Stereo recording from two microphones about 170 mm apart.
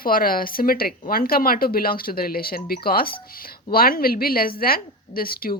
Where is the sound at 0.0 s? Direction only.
55° left (ahead or behind).